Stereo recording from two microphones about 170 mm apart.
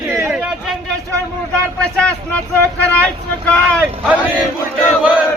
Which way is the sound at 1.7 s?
5° left (ahead or behind).